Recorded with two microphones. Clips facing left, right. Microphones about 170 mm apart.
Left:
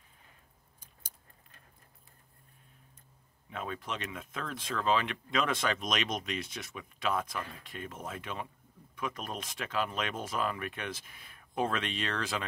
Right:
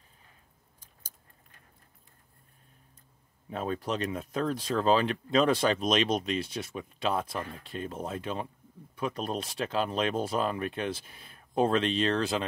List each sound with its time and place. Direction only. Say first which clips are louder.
3.4 s speech: right 7 dB; 35° right (ahead or behind)